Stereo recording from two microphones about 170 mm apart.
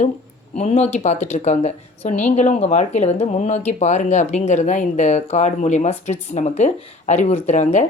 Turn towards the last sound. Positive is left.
turn(degrees=45)  # may be behind; listen again after turning